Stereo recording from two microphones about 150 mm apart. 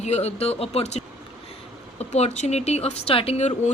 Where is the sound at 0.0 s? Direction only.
45° left (ahead or behind).